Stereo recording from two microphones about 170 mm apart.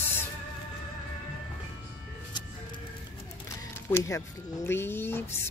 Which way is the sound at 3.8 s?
15° left (ahead or behind).